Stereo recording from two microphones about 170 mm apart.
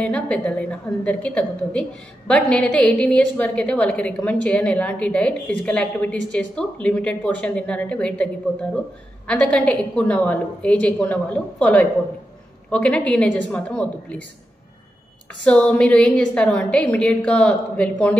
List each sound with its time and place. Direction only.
0.0 s a woman's voice: 5° left (ahead or behind)
15.4 s a woman's voice: 5° left (ahead or behind)